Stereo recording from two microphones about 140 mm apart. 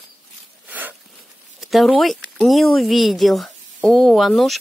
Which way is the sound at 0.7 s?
10° right (ahead or behind).